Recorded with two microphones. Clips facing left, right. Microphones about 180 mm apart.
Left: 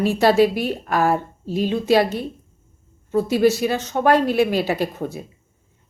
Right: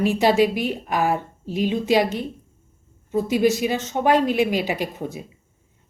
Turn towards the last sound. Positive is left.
turn(degrees=-15)  # may be behind; listen again after turning